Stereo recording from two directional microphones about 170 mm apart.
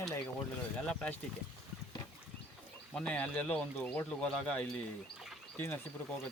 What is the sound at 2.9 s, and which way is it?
Speech, 5° left (ahead or behind).